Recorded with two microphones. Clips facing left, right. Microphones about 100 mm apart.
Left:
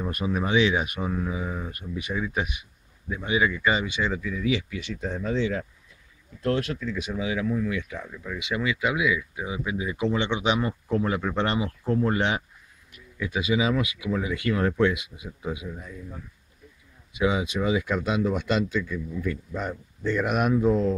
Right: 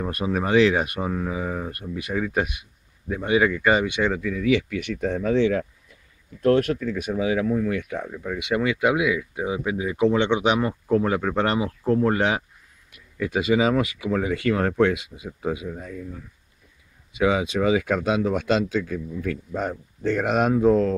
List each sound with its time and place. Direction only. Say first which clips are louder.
0.5 s speech: right 5 dB; 45° right (ahead or behind); by 5.7 s 65° right (ahead or behind)
6.4 s speech: right 7 dB; 55° right (ahead or behind)
15.8 s speech: right 6 dB; 60° right (ahead or behind)
17.2 s speech: right 4 dB; 55° right (ahead or behind)
18.4 s speech: right 3 dB; 90° right
18.8 s speech: right 2 dB; 55° right (ahead or behind)
20.2 s speech: right 4 dB; 30° right (ahead or behind)
20.5 s speech: right 4 dB; 55° right (ahead or behind)